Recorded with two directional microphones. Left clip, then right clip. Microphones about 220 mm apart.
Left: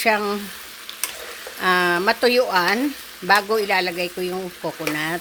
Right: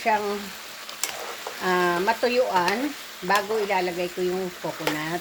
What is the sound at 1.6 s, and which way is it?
Speech, 55° left (ahead or behind).